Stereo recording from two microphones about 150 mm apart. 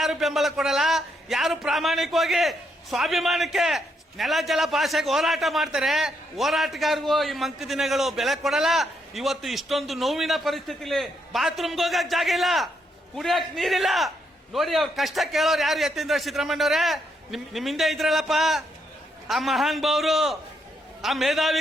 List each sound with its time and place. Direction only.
0.0 s a man's voice: centre (ahead or behind)